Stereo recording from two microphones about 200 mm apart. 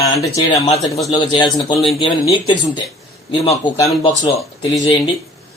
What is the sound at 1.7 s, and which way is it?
Speech, centre (ahead or behind).